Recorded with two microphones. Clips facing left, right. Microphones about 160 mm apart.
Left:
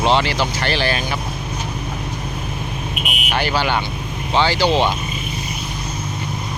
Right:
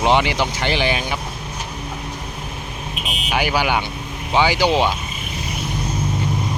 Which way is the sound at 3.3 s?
15° right (ahead or behind).